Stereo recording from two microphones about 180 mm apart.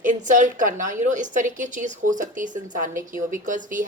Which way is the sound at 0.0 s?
45° right (ahead or behind).